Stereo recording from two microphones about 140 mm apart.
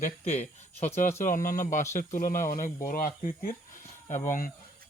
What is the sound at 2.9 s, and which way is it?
Speech, 85° left.